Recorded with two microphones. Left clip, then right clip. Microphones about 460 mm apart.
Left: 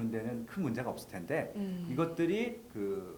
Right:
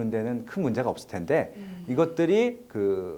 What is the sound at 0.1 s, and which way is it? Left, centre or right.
Speech, right.